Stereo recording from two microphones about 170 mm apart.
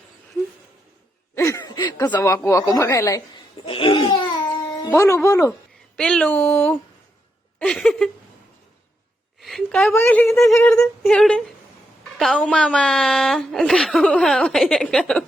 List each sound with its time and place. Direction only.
1.4 s a sound: 20° left (ahead or behind)
2.0 s speech: 15° left (ahead or behind)
3.7 s laughter: 35° left (ahead or behind)
4.4 s music: 25° left (ahead or behind)
4.9 s speech: 15° left (ahead or behind)
6.0 s a woman's voice: 5° left (ahead or behind)
9.4 s a sound: centre (ahead or behind)
9.9 s a woman's voice: 10° left (ahead or behind)